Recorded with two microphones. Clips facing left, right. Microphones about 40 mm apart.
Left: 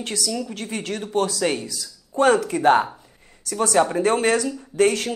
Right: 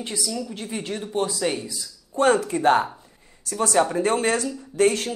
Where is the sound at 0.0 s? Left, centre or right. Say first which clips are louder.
Left 2 dB; left.